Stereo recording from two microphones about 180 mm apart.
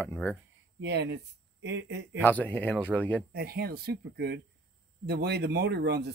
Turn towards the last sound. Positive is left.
turn(degrees=-65)  # may be behind; listen again after turning